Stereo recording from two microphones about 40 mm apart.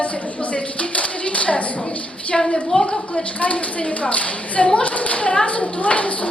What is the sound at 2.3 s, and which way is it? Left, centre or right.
Speech, centre.